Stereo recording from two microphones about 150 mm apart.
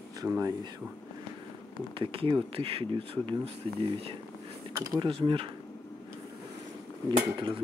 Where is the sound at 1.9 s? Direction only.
35° right (ahead or behind).